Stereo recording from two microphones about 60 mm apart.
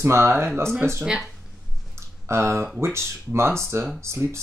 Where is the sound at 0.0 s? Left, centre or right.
Right.